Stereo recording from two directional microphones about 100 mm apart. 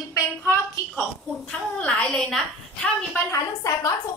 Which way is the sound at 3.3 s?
35° left (ahead or behind).